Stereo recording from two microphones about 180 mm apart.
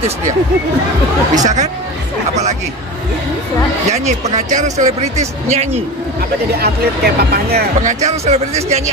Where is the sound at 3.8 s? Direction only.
40° right (ahead or behind).